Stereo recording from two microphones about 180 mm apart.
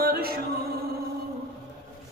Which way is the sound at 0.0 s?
60° right (ahead or behind).